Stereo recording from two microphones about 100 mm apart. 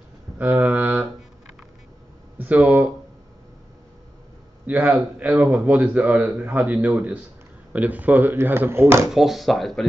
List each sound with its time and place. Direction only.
0.4 s a sound: 15° right (ahead or behind)
2.3 s speech: 15° right (ahead or behind)
4.6 s a man's voice: 15° right (ahead or behind)
9.1 s speech: 5° right (ahead or behind)